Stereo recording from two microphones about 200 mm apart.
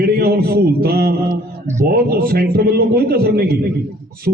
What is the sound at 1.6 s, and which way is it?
Speech, 15° right (ahead or behind).